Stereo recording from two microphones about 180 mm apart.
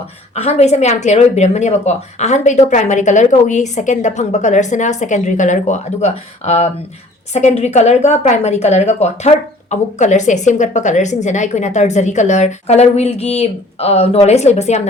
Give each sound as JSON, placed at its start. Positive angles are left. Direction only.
{"t": 0.3, "sound": "a woman's voice", "side_deg": 35}